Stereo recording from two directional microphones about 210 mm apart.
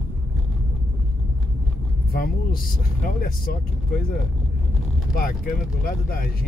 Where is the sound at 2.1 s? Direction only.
45° left (ahead or behind).